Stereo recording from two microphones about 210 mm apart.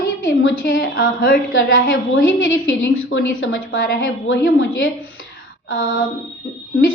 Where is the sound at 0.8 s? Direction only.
45° left (ahead or behind).